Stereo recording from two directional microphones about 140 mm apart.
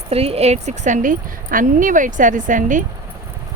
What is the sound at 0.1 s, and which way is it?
Speech, 45° right (ahead or behind).